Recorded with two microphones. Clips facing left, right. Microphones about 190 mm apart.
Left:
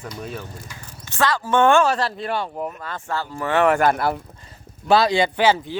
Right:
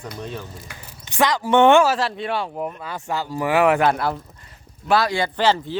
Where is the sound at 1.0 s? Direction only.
15° right (ahead or behind).